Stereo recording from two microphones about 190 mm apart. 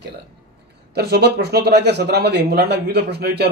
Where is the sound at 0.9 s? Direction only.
60° right (ahead or behind).